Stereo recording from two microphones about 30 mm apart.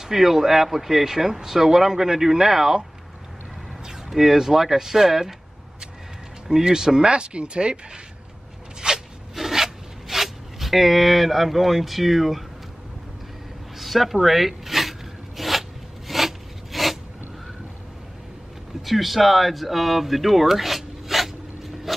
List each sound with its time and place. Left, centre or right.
0.0 s speech: centre
4.1 s speech: centre
6.6 s speech: right
7.1 s speech: right
8.8 s a sound: right
9.3 s rub: centre
13.7 s a sound: centre
14.2 s zipper: centre
16.1 s filing: centre
18.8 s speech: centre